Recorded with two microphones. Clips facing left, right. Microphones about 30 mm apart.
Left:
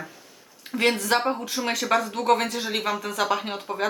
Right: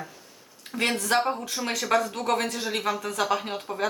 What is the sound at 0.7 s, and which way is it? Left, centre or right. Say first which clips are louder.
Speech: left 3 dB; centre.